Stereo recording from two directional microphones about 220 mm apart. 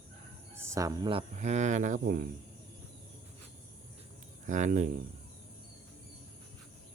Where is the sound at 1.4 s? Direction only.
30° right (ahead or behind).